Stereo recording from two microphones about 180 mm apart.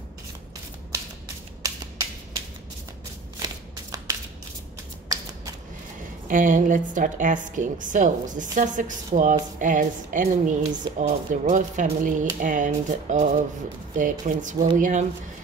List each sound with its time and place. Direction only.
0.9 s finger snapping: 20° right (ahead or behind)
3.4 s shuffling cards: 20° right (ahead or behind)
6.2 s a woman's voice: 45° right (ahead or behind)